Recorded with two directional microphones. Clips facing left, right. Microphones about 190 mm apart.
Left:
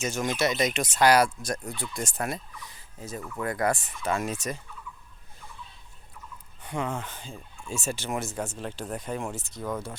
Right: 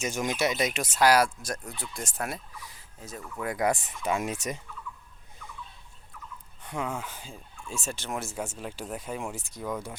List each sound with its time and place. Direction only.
0.0 s speech: 15° right (ahead or behind)
3.4 s speech: 15° right (ahead or behind)
6.6 s speech: centre (ahead or behind)